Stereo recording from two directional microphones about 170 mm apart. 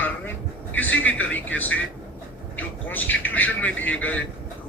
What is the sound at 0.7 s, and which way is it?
A man's voice, 10° left (ahead or behind).